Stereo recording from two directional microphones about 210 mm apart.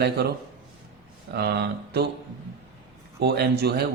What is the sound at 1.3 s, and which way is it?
Speech, 50° right (ahead or behind).